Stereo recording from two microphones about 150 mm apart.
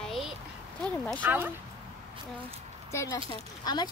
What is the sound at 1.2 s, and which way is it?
Speech, 15° right (ahead or behind).